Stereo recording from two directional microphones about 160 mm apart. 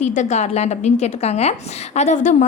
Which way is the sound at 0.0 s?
50° left (ahead or behind).